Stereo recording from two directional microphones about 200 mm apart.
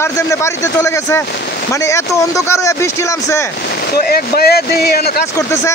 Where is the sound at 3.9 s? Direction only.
50° left (ahead or behind).